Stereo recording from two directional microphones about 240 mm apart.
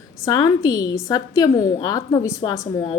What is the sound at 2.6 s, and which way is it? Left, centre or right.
Speech, left.